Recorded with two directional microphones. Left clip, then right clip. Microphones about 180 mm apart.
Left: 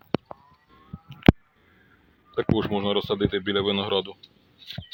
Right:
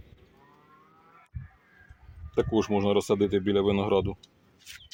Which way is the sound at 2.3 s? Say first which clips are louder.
Even; 5° right (ahead or behind).